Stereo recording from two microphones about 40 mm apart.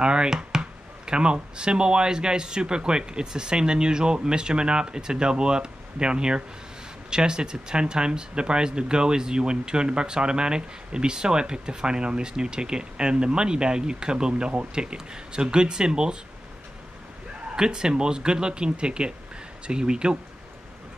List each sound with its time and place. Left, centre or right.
0.0 s speech: right
17.6 s speech: centre